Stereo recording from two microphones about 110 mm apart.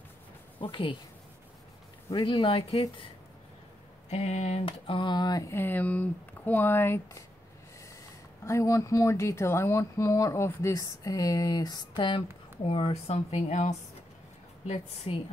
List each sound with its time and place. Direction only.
0.6 s speech: 50° left (ahead or behind)
2.1 s speech: 50° left (ahead or behind)
4.1 s speech: 90° left
4.6 s speech: 50° left (ahead or behind)
5.5 s speech: 20° left (ahead or behind)
8.5 s speech: 30° left (ahead or behind)
12.6 s speech: 65° left (ahead or behind); by 13.7 s 90° left
15.1 s a woman's voice: 55° left (ahead or behind)